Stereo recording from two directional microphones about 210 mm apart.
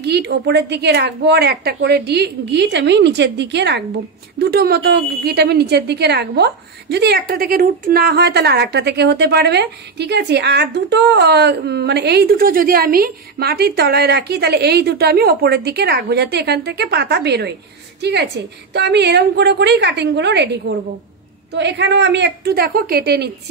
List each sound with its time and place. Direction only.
0.0 s a woman's voice: 55° right (ahead or behind)
21.5 s a woman's voice: 55° right (ahead or behind)